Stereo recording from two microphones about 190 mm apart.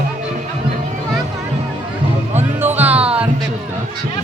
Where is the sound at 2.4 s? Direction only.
10° right (ahead or behind).